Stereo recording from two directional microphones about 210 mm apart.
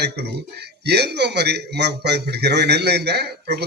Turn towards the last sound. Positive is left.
turn(degrees=-50)  # may be behind; listen again after turning